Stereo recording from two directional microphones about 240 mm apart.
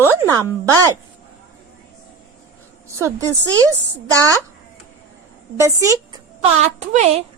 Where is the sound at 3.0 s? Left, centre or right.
Centre.